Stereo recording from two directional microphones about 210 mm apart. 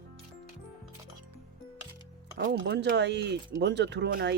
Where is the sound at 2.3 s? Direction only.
55° right (ahead or behind).